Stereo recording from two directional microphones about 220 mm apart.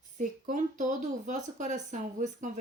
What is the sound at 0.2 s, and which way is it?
Speech, 35° right (ahead or behind).